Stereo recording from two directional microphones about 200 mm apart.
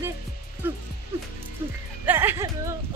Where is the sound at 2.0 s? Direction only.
10° right (ahead or behind).